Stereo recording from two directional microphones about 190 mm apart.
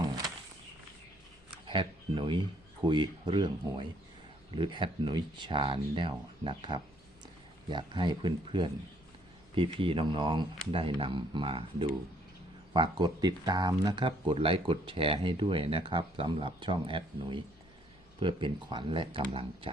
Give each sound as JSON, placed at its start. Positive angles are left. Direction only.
{"t": 1.6, "sound": "speech", "side_deg": -25}